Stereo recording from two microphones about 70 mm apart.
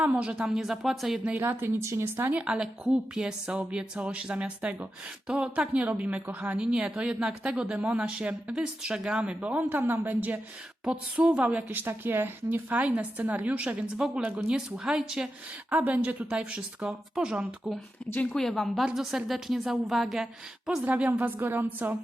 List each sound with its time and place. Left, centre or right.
0.0 s speech: centre
1.2 s speech: right
2.3 s a woman's voice: centre
15.7 s a woman's voice: right
18.3 s a woman's voice: centre
20.8 s a woman's voice: right